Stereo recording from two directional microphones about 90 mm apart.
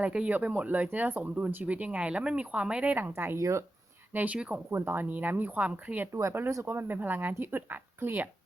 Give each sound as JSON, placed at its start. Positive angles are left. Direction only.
{"t": 0.0, "sound": "speech", "side_deg": -15}
{"t": 3.3, "sound": "speech", "side_deg": -35}
{"t": 4.1, "sound": "speech", "side_deg": -15}